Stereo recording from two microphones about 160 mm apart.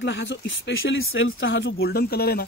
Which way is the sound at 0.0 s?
90° left.